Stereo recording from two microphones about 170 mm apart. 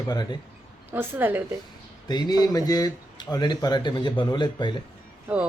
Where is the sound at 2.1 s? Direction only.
25° left (ahead or behind).